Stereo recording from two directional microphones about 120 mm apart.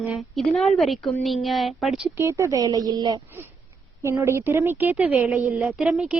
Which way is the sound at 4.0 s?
25° right (ahead or behind).